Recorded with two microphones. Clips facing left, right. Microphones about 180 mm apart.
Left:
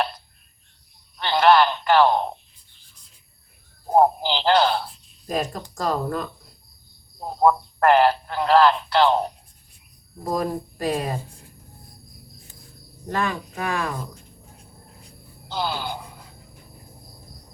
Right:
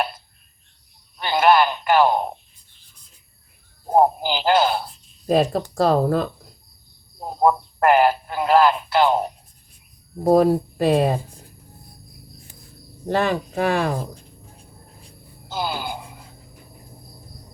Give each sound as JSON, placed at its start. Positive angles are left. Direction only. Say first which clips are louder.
{"t": 1.2, "sound": "radio", "louder": "even", "side_deg": -10}
{"t": 3.8, "sound": "speech", "louder": "right 1 dB", "side_deg": -10}
{"t": 5.3, "sound": "speech", "louder": "right 8 dB", "side_deg": -75}
{"t": 5.7, "sound": "speech", "louder": "right 7 dB", "side_deg": -35}
{"t": 7.2, "sound": "speech", "louder": "even", "side_deg": -10}
{"t": 10.2, "sound": "speech", "louder": "right 10 dB", "side_deg": -75}
{"t": 13.1, "sound": "speech", "louder": "right 5 dB", "side_deg": -30}
{"t": 15.4, "sound": "speech", "louder": "right 1 dB", "side_deg": -5}